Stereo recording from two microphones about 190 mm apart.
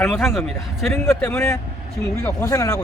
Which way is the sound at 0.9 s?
10° left (ahead or behind).